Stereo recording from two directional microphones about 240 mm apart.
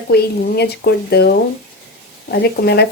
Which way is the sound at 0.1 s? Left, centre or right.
Left.